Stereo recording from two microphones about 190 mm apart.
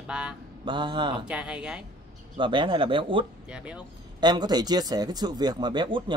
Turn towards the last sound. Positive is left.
turn(degrees=-25)  # may be behind; listen again after turning